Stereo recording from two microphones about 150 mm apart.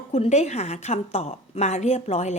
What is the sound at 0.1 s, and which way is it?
A woman's voice, 50° left (ahead or behind).